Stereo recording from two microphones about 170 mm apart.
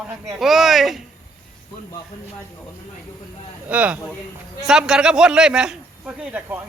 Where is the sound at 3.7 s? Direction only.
10° right (ahead or behind).